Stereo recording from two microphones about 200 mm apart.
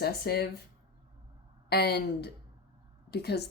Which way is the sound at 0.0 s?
50° left (ahead or behind).